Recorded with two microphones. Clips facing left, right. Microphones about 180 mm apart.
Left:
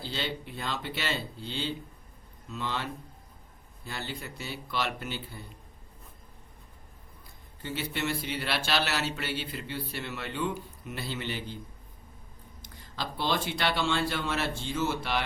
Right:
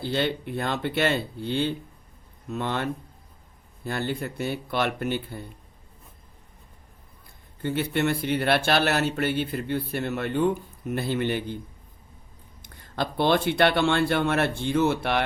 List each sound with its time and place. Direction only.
0.0 s speech: 55° right (ahead or behind)
7.6 s a man's voice: 55° right (ahead or behind)
12.6 s speech: 55° right (ahead or behind)